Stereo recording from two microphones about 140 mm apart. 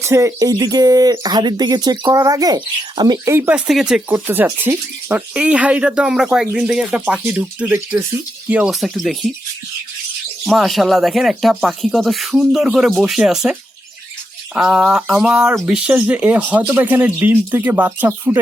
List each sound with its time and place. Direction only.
0.0 s speech: 20° right (ahead or behind)
3.2 s speech: 15° right (ahead or behind)
3.7 s speech: 5° right (ahead or behind)
4.1 s speech: 20° right (ahead or behind)
8.7 s speech: centre (ahead or behind)
10.4 s speech: centre (ahead or behind)